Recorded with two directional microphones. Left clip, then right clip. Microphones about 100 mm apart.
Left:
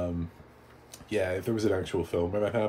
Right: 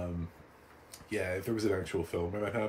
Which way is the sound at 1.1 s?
25° left (ahead or behind).